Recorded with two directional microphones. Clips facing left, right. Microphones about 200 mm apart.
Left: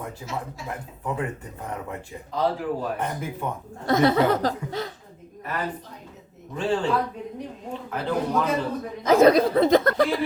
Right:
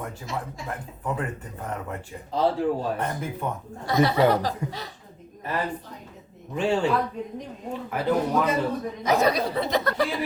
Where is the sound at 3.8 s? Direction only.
50° left (ahead or behind).